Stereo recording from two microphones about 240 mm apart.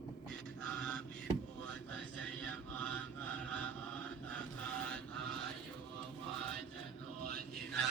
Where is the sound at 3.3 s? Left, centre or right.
Centre.